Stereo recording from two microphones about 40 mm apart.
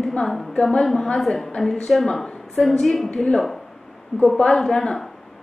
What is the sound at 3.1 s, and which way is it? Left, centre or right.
Speech, centre.